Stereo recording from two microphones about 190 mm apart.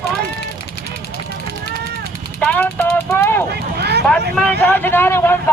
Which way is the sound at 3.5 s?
60° right (ahead or behind).